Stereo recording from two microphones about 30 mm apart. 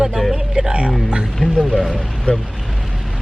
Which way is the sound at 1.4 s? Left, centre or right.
Centre.